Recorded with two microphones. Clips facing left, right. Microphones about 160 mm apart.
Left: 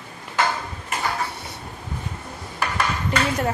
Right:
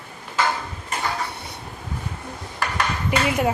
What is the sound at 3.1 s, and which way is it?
Speech, 15° right (ahead or behind).